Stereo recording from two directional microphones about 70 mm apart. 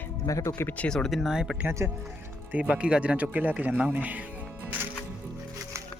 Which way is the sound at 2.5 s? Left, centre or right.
Centre.